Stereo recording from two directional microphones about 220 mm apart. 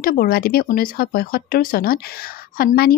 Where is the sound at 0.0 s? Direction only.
40° left (ahead or behind).